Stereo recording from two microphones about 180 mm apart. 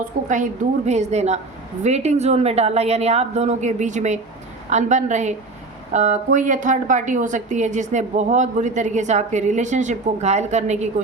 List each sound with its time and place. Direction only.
0.3 s a woman's voice: 45° right (ahead or behind)